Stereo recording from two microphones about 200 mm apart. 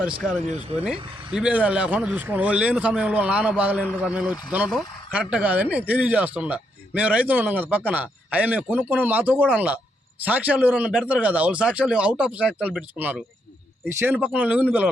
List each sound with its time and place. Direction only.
0.9 s a man's voice: 5° right (ahead or behind)